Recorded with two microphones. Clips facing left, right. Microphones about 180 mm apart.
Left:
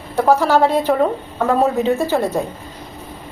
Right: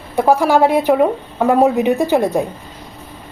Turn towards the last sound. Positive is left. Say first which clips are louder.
# right 3 dB
turn(degrees=-15)  # may be behind; listen again after turning